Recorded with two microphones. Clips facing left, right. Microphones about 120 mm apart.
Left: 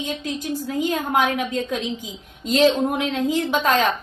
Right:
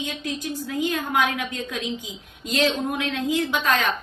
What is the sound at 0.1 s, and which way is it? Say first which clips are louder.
A woman's voice: left 3 dB; 35° left (ahead or behind).